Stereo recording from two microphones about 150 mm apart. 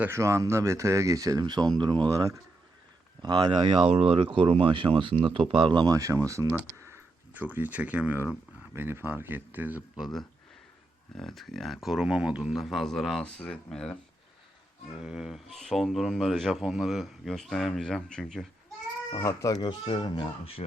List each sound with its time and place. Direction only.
0.0 s speech: 20° right (ahead or behind)
11.2 s a man's voice: centre (ahead or behind)
19.2 s speech: 20° left (ahead or behind); by 20.7 s 40° left (ahead or behind)